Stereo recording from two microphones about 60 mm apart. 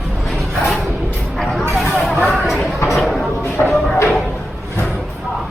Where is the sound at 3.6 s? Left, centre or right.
Left.